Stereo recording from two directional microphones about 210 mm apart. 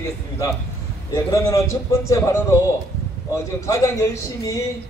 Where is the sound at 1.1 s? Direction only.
15° left (ahead or behind).